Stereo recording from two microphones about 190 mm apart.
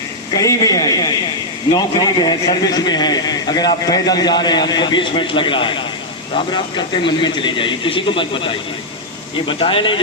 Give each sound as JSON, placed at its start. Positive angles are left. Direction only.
{"t": 0.3, "sound": "a man's voice", "side_deg": 20}